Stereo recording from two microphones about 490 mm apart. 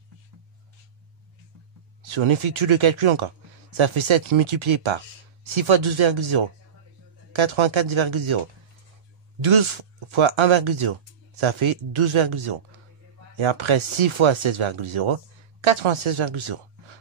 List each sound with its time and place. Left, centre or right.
2.0 s speech: right
9.4 s speech: right